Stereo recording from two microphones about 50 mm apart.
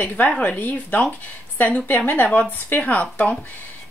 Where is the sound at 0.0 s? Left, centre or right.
Left.